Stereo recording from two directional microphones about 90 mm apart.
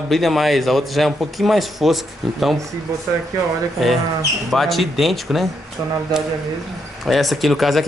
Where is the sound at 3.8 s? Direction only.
Centre (ahead or behind).